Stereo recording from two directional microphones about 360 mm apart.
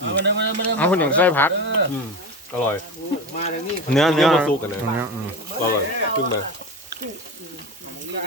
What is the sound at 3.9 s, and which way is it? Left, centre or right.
Speech, centre.